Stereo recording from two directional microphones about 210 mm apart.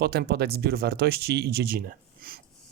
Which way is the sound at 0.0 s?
50° right (ahead or behind).